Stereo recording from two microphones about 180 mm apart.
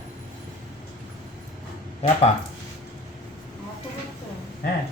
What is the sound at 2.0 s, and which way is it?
Speech, 35° left (ahead or behind).